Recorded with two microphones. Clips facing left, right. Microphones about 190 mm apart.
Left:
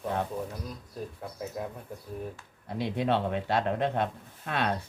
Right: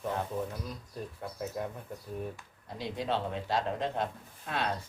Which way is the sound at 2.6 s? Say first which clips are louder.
Left 6 dB; 60° left (ahead or behind).